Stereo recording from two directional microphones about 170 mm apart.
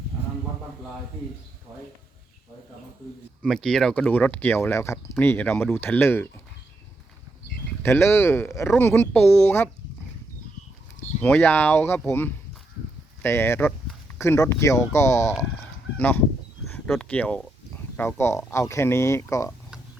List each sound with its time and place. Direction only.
3.4 s speech: 5° left (ahead or behind)
7.8 s speech: 15° left (ahead or behind)
11.2 s speech: 10° left (ahead or behind)